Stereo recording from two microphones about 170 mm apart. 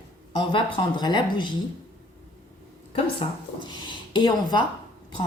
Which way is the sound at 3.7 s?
25° left (ahead or behind).